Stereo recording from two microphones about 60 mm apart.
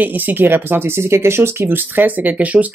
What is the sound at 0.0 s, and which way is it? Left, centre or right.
Speech, right.